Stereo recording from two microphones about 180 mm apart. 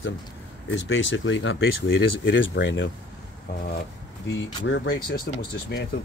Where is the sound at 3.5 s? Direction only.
60° left (ahead or behind).